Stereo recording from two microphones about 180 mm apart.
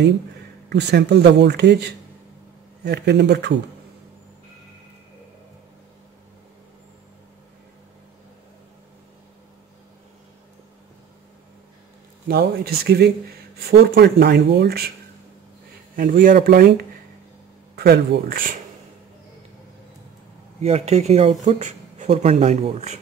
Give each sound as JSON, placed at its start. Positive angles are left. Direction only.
{"t": 0.7, "sound": "speech", "side_deg": -70}
{"t": 12.3, "sound": "speech", "side_deg": -60}
{"t": 16.0, "sound": "speech", "side_deg": -50}
{"t": 20.6, "sound": "speech", "side_deg": -35}